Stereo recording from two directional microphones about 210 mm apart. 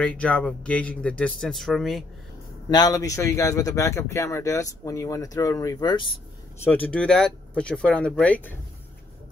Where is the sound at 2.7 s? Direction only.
15° left (ahead or behind).